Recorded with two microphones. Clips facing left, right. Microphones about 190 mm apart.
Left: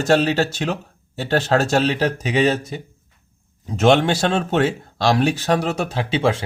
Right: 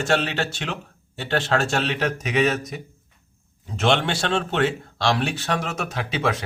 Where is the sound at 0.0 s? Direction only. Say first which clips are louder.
Left 6 dB; 40° left (ahead or behind).